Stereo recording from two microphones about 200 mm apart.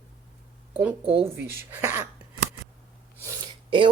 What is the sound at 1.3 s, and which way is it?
Speech, 10° right (ahead or behind).